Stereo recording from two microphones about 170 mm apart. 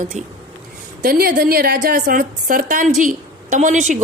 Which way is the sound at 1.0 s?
60° right (ahead or behind).